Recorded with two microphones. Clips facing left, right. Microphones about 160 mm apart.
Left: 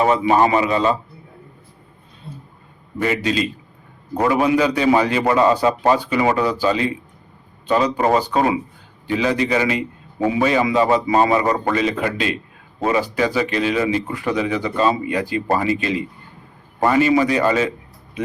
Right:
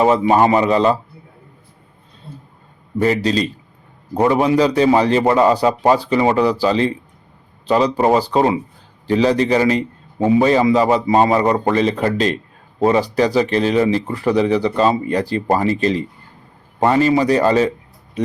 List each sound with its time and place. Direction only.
0.3 s speech: 25° right (ahead or behind)
3.0 s speech: 35° right (ahead or behind)
8.0 s speech: 25° right (ahead or behind)